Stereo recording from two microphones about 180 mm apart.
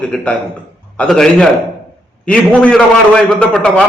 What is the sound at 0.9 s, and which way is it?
Speech, 5° left (ahead or behind).